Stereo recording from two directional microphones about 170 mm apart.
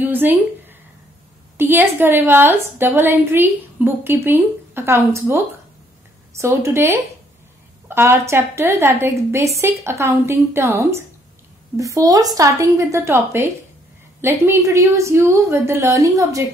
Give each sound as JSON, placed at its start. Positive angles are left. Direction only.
{"t": 0.0, "sound": "a woman's voice", "side_deg": -10}